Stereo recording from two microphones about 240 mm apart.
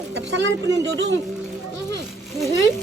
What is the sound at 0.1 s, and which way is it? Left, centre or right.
Speech, right.